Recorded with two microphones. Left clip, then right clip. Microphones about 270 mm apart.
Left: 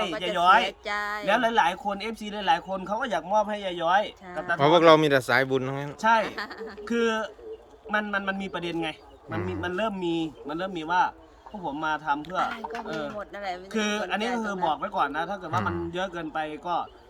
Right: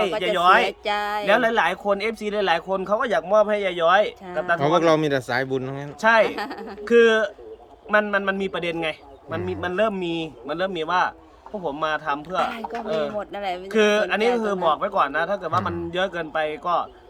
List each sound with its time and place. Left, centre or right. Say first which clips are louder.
0.3 s speech: right 2 dB; centre
0.6 s speech: right 6 dB; right
1.3 s speech: right 3 dB; centre
4.5 s speech: left 2 dB; centre
6.0 s speech: right 5 dB; centre
6.2 s speech: right 6 dB; right
6.8 s speech: right 10 dB; centre
13.1 s speech: right 6 dB; right
13.7 s speech: right 10 dB; centre
14.2 s speech: right 7 dB; right
14.7 s speech: right 7 dB; centre